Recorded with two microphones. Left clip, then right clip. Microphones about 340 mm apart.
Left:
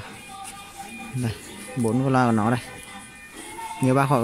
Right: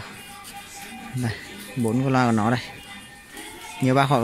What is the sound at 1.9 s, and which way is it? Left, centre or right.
Speech, centre.